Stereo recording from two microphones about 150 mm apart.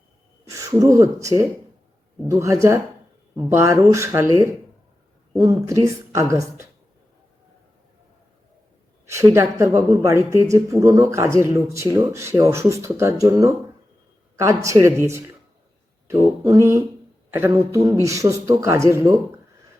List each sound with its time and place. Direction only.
0.4 s speech: 20° right (ahead or behind)
9.0 s speech: 20° right (ahead or behind)